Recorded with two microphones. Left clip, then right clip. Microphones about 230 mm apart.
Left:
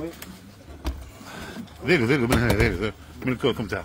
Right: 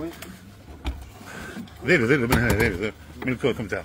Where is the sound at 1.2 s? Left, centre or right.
Centre.